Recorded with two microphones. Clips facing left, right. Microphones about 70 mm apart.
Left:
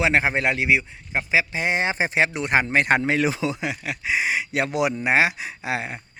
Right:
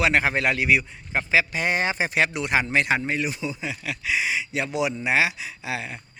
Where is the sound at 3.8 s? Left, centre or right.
Left.